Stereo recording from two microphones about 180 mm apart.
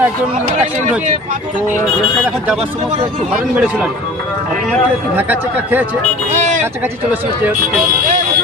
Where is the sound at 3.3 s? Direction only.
5° right (ahead or behind).